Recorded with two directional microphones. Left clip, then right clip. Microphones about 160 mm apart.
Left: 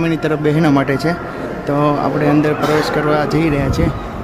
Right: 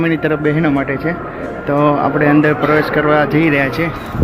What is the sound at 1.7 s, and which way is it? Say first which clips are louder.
Speech: right 3 dB; 15° left (ahead or behind).